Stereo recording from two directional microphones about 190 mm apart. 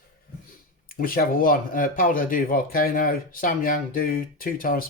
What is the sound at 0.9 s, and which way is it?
Speech, 50° left (ahead or behind).